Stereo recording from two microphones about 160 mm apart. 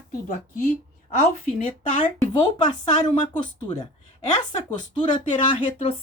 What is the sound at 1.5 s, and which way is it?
A woman's voice, 40° left (ahead or behind).